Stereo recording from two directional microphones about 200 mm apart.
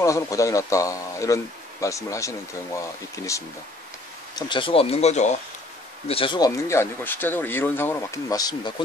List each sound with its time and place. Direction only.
0.0 s speech: 15° left (ahead or behind)
4.4 s speech: 25° left (ahead or behind)